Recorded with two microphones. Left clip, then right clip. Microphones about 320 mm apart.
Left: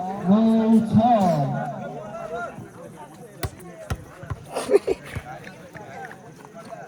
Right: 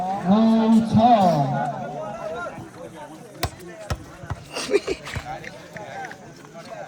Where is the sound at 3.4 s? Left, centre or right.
Right.